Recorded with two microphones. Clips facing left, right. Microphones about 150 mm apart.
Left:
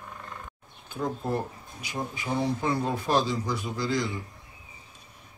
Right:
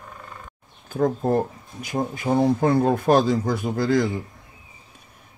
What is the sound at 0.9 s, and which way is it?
Speech, 45° right (ahead or behind).